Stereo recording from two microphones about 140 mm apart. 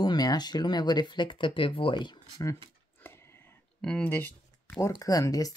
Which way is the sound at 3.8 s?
5° left (ahead or behind).